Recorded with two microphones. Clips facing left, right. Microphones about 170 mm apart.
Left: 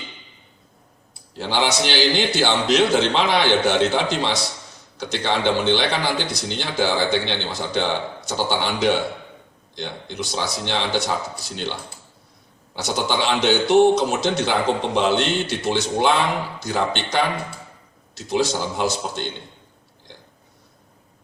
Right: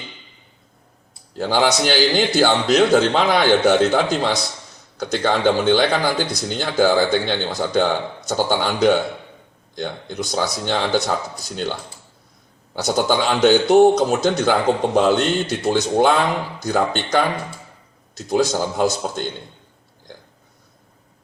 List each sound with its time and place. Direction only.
1.4 s speech: 45° right (ahead or behind)
18.3 s speech: 45° right (ahead or behind)